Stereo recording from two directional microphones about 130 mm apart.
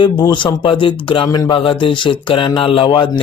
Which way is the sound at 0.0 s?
35° left (ahead or behind).